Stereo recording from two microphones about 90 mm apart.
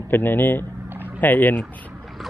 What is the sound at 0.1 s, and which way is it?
Speech, 20° left (ahead or behind).